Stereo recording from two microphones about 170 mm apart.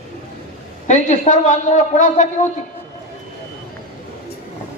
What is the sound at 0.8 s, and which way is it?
A man's voice, 45° left (ahead or behind).